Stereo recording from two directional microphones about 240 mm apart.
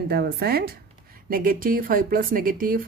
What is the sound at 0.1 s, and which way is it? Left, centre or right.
A woman's voice, right.